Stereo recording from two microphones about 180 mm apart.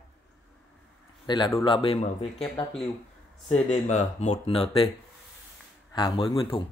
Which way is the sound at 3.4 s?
35° left (ahead or behind).